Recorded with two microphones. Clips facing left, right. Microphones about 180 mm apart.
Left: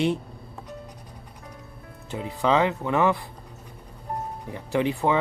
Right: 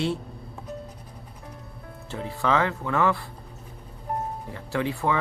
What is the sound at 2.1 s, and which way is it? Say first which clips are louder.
Speech: left 2 dB; 15° left (ahead or behind).